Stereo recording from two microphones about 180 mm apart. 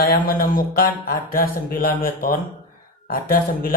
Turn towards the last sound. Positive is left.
turn(degrees=55)  # may be behind; listen again after turning